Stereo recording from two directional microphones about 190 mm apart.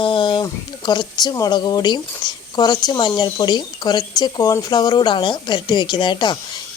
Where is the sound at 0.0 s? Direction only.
25° left (ahead or behind).